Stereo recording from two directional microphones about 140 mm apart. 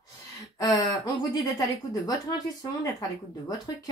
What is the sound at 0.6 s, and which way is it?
Speech, 25° left (ahead or behind).